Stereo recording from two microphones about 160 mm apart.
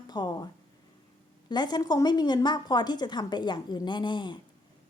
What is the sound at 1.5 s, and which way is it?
A woman's voice, 25° left (ahead or behind).